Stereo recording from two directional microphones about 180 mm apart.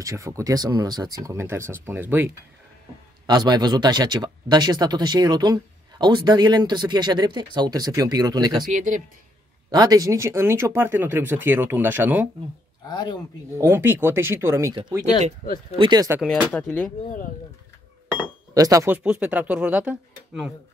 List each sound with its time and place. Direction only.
0.0 s speech: 20° right (ahead or behind)
3.3 s speech: 20° right (ahead or behind)
8.7 s speech: 45° right (ahead or behind)
9.7 s speech: 20° right (ahead or behind)
12.8 s speech: 25° left (ahead or behind)
13.6 s speech: 15° right (ahead or behind)
16.1 s speech: 5° right (ahead or behind)
18.5 s speech: 20° right (ahead or behind)
18.9 s speech: 5° right (ahead or behind)